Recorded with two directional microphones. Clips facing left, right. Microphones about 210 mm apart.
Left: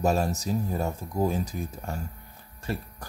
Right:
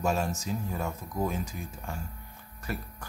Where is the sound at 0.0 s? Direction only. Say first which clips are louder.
Left 4 dB; 35° left (ahead or behind).